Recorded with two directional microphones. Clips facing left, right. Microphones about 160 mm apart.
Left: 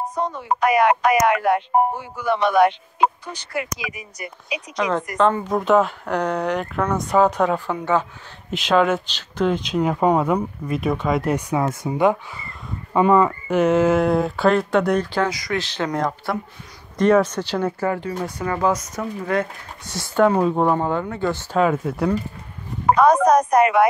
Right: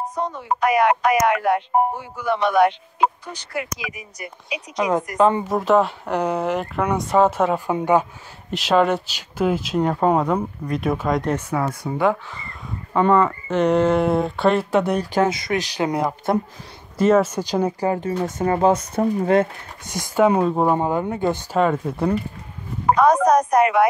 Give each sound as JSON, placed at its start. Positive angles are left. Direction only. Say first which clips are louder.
{"t": 0.6, "sound": "a man's voice", "louder": "left 1 dB", "side_deg": 90}
{"t": 3.7, "sound": "speech", "louder": "left 1 dB", "side_deg": 90}
{"t": 4.7, "sound": "speech", "louder": "right 2 dB", "side_deg": -10}
{"t": 8.5, "sound": "speech", "louder": "even", "side_deg": 0}
{"t": 15.1, "sound": "speech", "louder": "right 3 dB", "side_deg": -25}
{"t": 15.6, "sound": "speech", "louder": "right 1 dB", "side_deg": -15}
{"t": 18.2, "sound": "speech", "louder": "right 4 dB", "side_deg": -30}
{"t": 20.3, "sound": "speech", "louder": "even", "side_deg": -5}
{"t": 21.5, "sound": "speech", "louder": "left 2 dB", "side_deg": 0}
{"t": 22.9, "sound": "speech", "louder": "left 1 dB", "side_deg": 90}